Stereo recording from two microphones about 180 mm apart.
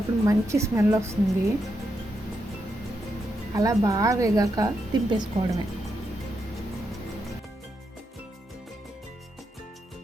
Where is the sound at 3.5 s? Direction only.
20° right (ahead or behind).